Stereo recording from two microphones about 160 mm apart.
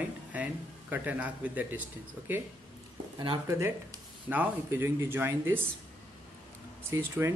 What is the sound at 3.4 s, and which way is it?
Speech, 20° right (ahead or behind).